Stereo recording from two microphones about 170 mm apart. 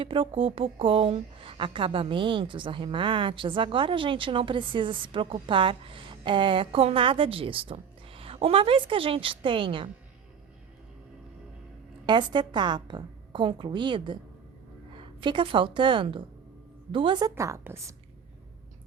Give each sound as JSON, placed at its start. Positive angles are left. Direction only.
{"t": 0.0, "sound": "speech", "side_deg": -30}
{"t": 12.0, "sound": "a woman's voice", "side_deg": -25}